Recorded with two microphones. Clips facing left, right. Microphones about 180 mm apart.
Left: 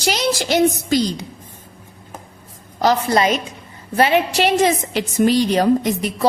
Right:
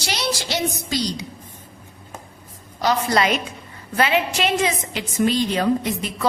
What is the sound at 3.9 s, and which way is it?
A woman's voice, 35° left (ahead or behind).